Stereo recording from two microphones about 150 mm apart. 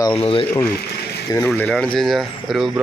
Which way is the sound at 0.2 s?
40° left (ahead or behind).